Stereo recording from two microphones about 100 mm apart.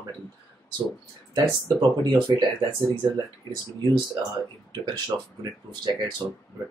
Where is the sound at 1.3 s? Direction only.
50° right (ahead or behind).